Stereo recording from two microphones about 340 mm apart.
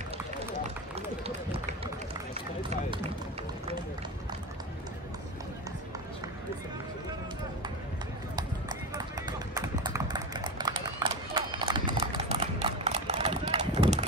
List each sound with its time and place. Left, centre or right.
0.9 s run: centre
8.4 s clip-clop: centre
9.5 s horse: centre